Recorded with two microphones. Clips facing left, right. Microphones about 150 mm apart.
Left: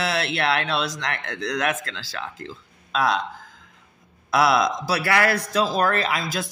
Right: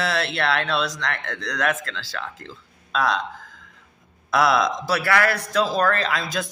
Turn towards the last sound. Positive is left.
turn(degrees=5)  # may be behind; listen again after turning